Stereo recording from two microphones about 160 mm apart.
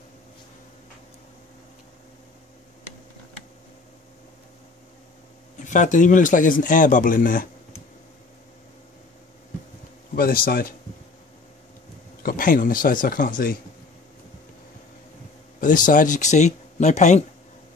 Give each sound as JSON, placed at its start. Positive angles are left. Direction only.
{"t": 5.6, "sound": "a man's voice", "side_deg": 50}
{"t": 10.1, "sound": "a man's voice", "side_deg": 65}
{"t": 12.2, "sound": "speech", "side_deg": 60}
{"t": 15.6, "sound": "speech", "side_deg": 55}